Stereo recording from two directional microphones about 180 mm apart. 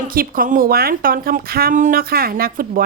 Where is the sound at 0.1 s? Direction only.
55° right (ahead or behind).